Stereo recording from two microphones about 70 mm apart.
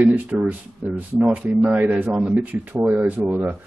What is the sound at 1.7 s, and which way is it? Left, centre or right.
Speech, right.